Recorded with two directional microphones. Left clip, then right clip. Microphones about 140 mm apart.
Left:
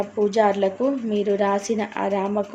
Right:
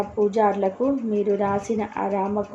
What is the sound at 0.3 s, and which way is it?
Speech, 35° left (ahead or behind).